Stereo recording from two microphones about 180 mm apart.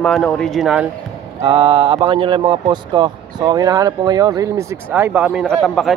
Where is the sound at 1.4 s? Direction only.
30° right (ahead or behind).